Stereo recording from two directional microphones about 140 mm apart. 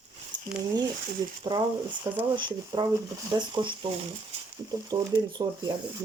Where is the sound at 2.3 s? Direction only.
35° right (ahead or behind).